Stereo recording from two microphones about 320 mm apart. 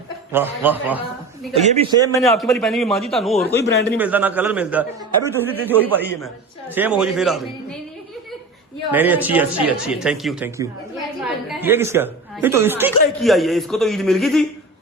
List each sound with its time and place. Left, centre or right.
0.3 s speech: centre
1.5 s a man's voice: centre
2.1 s speech: centre
3.9 s speech: centre
8.9 s speech: centre